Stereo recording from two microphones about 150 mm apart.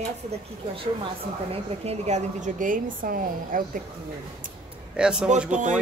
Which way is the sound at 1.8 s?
50° right (ahead or behind).